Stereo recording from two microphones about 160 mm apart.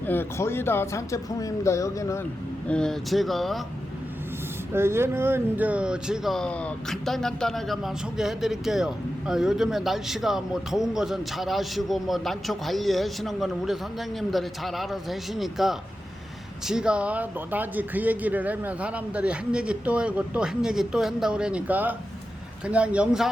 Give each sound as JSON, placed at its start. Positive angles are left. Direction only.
{"t": 0.0, "sound": "speech", "side_deg": 15}
{"t": 2.6, "sound": "speech", "side_deg": 5}
{"t": 4.7, "sound": "a man's voice", "side_deg": -15}